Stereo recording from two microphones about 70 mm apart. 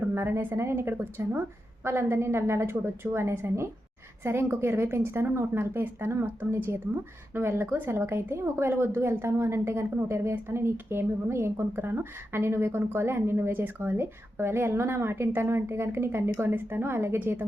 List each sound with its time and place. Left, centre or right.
0.1 s a woman's voice: right